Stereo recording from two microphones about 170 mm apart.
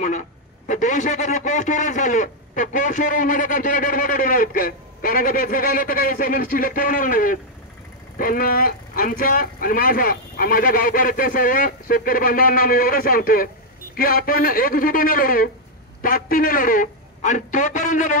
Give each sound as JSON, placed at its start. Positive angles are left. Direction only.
{"t": 0.0, "sound": "a man's voice", "side_deg": 45}